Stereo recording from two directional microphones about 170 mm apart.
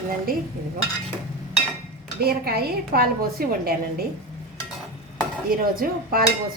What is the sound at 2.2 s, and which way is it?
Dishes, 65° right (ahead or behind).